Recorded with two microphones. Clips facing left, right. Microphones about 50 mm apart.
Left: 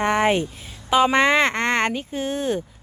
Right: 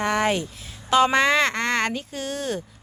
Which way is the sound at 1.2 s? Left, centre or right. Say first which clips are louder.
Left 2 dB; left.